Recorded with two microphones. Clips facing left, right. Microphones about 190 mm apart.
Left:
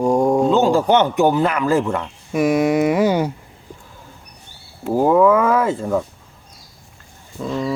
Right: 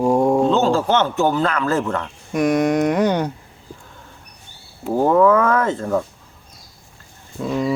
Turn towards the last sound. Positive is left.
turn(degrees=-5)  # may be behind; listen again after turning